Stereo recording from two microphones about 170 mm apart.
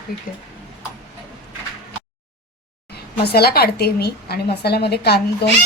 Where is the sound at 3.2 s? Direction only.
70° left (ahead or behind).